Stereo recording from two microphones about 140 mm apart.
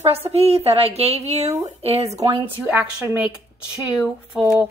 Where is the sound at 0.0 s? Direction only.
45° right (ahead or behind).